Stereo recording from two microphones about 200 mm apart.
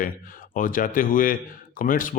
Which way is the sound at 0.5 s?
40° left (ahead or behind).